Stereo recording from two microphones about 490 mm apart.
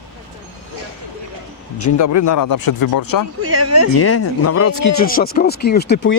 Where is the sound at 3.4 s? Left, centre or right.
Right.